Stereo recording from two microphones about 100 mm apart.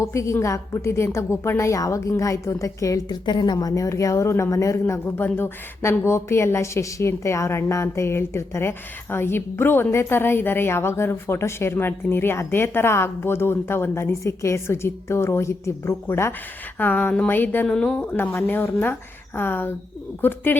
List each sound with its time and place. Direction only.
0.0 s a woman's voice: 30° left (ahead or behind)
3.2 s a woman's voice: 45° left (ahead or behind); by 20.6 s 20° left (ahead or behind)